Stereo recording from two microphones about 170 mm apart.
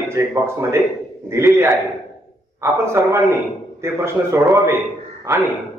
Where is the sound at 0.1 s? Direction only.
15° right (ahead or behind).